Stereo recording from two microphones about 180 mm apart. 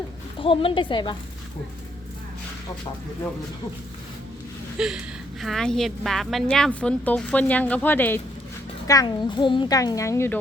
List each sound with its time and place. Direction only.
0.3 s a child's voice: 30° left (ahead or behind)
4.8 s a woman's voice: 5° right (ahead or behind)
8.9 s a child's voice: 20° left (ahead or behind)